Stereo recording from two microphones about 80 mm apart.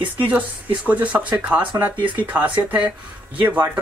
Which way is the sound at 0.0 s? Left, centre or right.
Right.